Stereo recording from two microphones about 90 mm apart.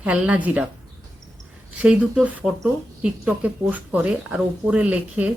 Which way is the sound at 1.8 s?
10° right (ahead or behind).